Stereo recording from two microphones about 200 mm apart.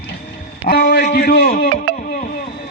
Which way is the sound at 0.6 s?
50° left (ahead or behind).